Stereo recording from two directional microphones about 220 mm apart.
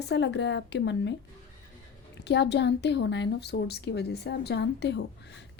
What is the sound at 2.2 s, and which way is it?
A woman's voice, 50° left (ahead or behind).